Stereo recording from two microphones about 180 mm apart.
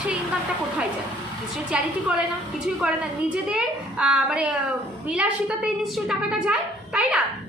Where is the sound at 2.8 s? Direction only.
5° right (ahead or behind).